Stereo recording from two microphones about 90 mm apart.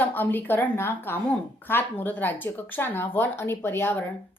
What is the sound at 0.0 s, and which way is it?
A woman's voice, 20° left (ahead or behind).